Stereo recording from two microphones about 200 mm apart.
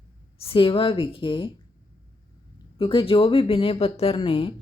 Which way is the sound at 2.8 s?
25° left (ahead or behind).